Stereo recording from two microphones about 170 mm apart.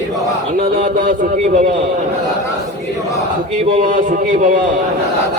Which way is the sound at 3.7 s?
50° right (ahead or behind).